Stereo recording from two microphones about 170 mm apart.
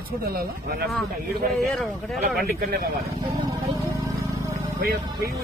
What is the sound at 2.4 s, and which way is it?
Speech, 55° right (ahead or behind).